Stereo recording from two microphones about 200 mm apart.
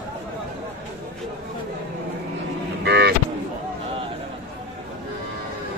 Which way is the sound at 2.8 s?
55° right (ahead or behind).